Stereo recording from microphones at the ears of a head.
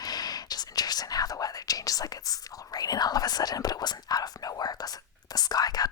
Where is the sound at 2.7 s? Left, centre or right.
Left.